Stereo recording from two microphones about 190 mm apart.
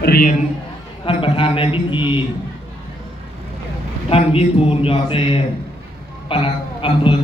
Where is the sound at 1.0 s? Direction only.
25° left (ahead or behind).